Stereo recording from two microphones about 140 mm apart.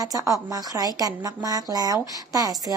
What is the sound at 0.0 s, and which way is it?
Speech, 25° right (ahead or behind).